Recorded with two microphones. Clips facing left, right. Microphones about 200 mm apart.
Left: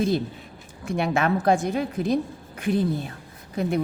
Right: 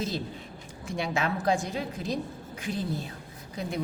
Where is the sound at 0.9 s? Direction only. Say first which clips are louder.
Left 7 dB; 55° left (ahead or behind).